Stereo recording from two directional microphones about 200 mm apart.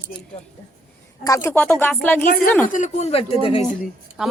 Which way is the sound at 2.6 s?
40° left (ahead or behind).